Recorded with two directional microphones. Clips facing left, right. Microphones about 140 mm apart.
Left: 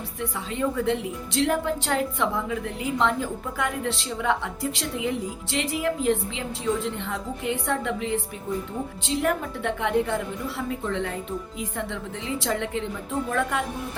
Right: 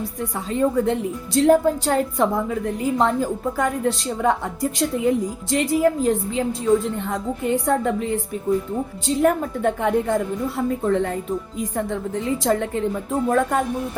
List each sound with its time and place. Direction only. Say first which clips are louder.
0.2 s a woman's voice: right 6 dB; 40° right (ahead or behind)